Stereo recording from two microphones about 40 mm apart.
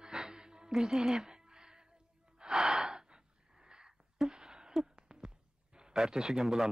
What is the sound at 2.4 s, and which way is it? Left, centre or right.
Gasp, centre.